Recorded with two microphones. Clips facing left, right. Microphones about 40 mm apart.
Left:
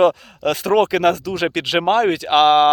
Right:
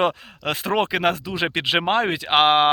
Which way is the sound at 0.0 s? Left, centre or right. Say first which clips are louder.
Left 7 dB; right.